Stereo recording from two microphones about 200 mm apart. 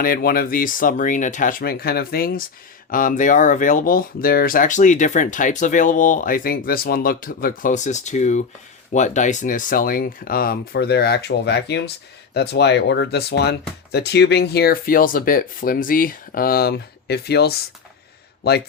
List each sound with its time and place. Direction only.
0.0 s speech: 45° left (ahead or behind)